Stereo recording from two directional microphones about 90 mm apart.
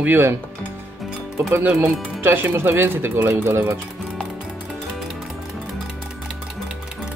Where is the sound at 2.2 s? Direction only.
25° right (ahead or behind).